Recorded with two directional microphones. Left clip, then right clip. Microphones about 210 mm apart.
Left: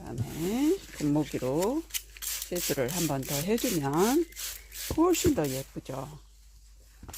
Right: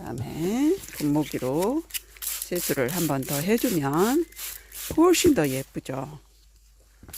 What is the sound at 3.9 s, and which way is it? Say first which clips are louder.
Speech: right 2 dB; 20° right (ahead or behind).